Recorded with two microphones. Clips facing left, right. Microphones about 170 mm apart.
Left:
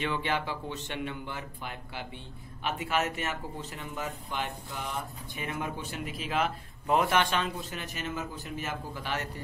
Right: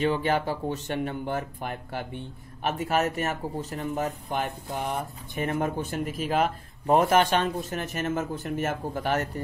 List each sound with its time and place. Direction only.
0.0 s speech: 40° right (ahead or behind)